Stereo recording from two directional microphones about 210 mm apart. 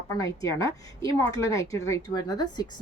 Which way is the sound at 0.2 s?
15° left (ahead or behind).